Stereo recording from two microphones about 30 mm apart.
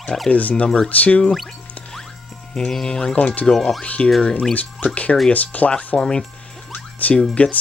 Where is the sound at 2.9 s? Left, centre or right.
Left.